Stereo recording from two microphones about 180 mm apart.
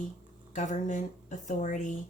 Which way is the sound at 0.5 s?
45° left (ahead or behind).